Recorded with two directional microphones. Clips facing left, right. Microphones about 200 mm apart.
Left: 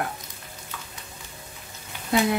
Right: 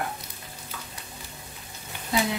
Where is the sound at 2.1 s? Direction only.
55° left (ahead or behind).